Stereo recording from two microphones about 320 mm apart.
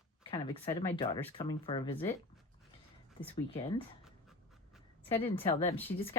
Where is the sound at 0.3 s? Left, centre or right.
Centre.